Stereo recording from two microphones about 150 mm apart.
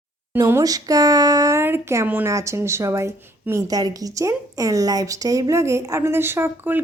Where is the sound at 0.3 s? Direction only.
20° right (ahead or behind).